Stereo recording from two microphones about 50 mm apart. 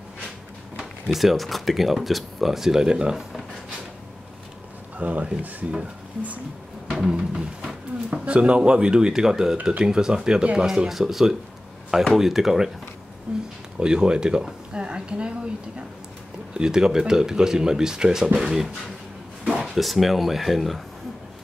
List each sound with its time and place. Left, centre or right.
0.7 s speech: centre
4.9 s speech: right
7.0 s speech: centre
10.7 s speech: centre
13.3 s a sound: centre
13.7 s speech: centre
16.5 s speech: centre